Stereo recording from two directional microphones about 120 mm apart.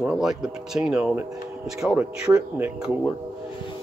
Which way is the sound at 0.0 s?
5° right (ahead or behind).